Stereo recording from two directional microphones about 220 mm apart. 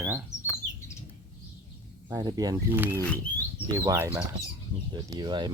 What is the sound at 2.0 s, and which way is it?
Speech, 15° right (ahead or behind).